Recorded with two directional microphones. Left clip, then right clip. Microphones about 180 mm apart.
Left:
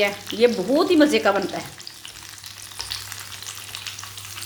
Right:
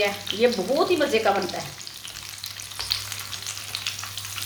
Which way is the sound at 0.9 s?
65° left (ahead or behind).